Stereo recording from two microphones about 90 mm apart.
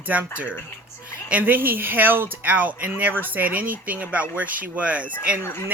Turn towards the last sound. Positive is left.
turn(degrees=30)  # may be behind; listen again after turning